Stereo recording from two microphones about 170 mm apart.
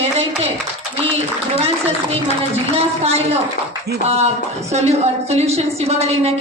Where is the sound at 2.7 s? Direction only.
35° right (ahead or behind).